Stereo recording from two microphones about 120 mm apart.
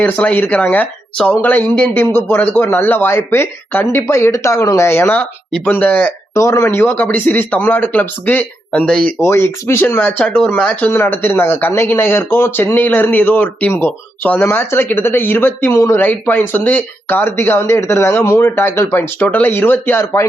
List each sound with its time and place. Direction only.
0.0 s speech: 15° left (ahead or behind)
6.3 s speech: 25° left (ahead or behind); by 9.1 s 10° left (ahead or behind)
9.2 s speech: 20° left (ahead or behind)